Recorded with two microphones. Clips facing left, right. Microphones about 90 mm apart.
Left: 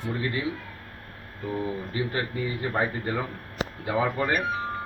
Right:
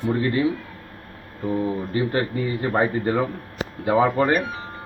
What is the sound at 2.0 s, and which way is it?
Speech, 50° right (ahead or behind).